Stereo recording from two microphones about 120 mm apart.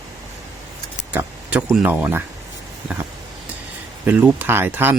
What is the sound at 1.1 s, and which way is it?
Vehicle, 10° right (ahead or behind).